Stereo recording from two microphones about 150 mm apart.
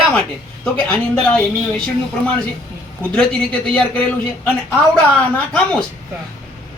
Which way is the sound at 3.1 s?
10° left (ahead or behind).